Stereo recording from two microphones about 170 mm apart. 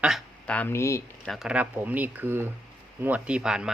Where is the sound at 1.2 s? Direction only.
Centre (ahead or behind).